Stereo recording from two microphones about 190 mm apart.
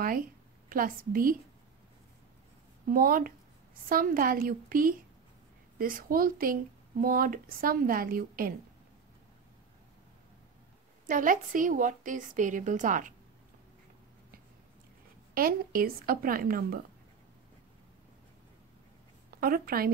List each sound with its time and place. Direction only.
0.7 s speech: 50° right (ahead or behind)
2.9 s speech: 50° right (ahead or behind)
11.1 s speech: 45° right (ahead or behind)
15.3 s speech: 50° right (ahead or behind)
19.4 s speech: 50° right (ahead or behind)